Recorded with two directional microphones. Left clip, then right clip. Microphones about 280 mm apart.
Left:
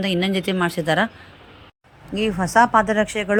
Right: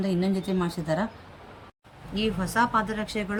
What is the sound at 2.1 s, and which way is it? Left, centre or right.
Speech, centre.